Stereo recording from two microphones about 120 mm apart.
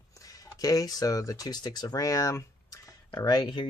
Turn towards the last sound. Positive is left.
turn(degrees=35)  # may be behind; listen again after turning